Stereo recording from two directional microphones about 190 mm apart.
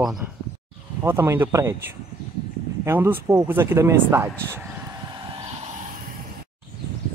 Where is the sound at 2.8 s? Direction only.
15° right (ahead or behind).